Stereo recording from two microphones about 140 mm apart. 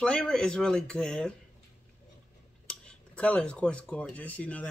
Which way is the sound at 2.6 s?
5° left (ahead or behind).